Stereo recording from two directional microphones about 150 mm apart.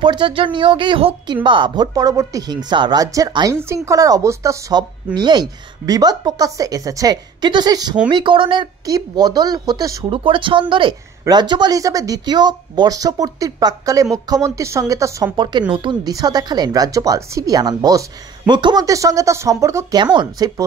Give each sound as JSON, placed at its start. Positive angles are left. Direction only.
{"t": 0.0, "sound": "a woman's voice", "side_deg": -30}
{"t": 10.0, "sound": "a woman's voice", "side_deg": -35}